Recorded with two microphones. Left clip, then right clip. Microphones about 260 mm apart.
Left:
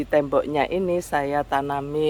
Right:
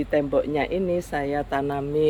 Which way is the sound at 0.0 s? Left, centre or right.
Centre.